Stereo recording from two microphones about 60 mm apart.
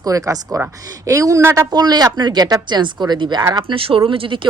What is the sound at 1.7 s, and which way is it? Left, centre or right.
Speech, right.